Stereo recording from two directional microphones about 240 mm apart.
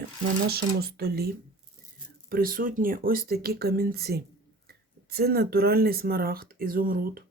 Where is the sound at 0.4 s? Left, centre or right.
Right.